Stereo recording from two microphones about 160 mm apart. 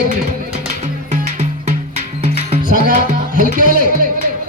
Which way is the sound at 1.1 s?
55° right (ahead or behind).